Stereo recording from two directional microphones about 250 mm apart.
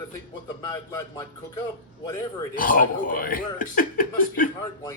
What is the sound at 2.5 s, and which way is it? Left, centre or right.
Speech, left.